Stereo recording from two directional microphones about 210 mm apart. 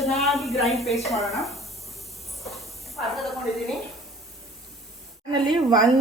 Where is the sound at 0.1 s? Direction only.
Centre (ahead or behind).